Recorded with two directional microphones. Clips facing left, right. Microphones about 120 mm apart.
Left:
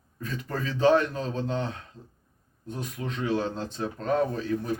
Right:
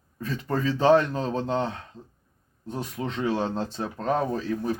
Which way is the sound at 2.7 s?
35° right (ahead or behind).